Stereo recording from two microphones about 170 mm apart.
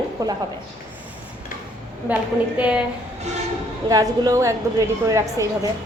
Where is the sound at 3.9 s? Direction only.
20° right (ahead or behind).